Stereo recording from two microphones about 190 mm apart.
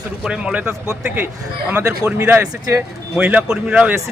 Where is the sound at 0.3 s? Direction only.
5° right (ahead or behind).